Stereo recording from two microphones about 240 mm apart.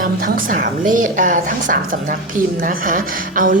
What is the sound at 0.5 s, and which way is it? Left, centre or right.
A woman's voice, right.